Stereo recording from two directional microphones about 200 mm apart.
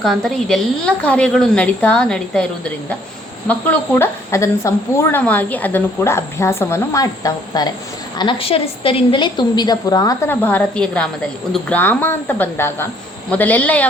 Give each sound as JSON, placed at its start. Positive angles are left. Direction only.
{"t": 0.0, "sound": "a woman's voice", "side_deg": 0}